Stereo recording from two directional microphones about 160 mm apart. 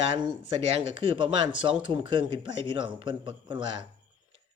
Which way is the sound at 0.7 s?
35° right (ahead or behind).